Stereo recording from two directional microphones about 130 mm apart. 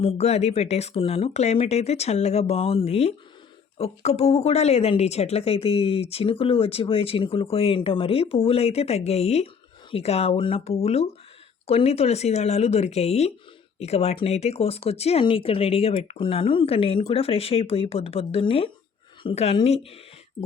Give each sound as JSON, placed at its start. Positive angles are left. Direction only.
{"t": 0.0, "sound": "a woman's voice", "side_deg": 50}